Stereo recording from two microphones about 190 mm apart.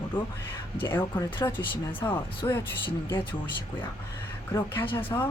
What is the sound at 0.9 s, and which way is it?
Speech, 10° left (ahead or behind).